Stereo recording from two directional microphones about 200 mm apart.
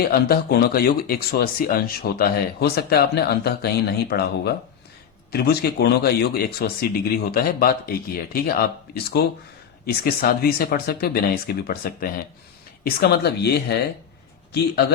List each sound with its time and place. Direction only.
0.0 s speech: 50° left (ahead or behind)